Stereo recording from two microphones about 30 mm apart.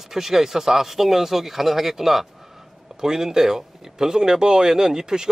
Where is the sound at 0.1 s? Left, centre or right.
Centre.